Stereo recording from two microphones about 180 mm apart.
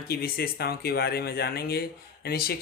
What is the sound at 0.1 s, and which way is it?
Speech, 60° left (ahead or behind).